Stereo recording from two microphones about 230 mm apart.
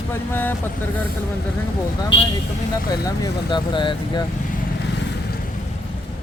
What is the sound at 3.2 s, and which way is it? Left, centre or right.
Speech, centre.